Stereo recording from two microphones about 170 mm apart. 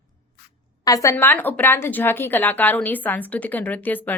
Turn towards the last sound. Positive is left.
turn(degrees=10)  # may be behind; listen again after turning